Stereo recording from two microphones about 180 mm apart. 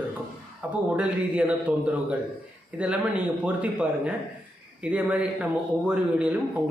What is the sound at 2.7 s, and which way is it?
A man's voice, 5° right (ahead or behind).